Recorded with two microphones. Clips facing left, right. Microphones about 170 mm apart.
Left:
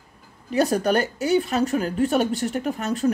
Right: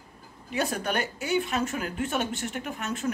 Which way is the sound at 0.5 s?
40° left (ahead or behind).